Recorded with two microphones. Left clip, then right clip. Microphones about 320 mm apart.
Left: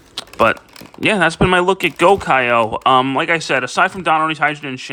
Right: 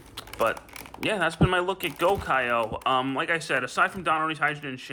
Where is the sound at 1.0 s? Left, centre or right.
Centre.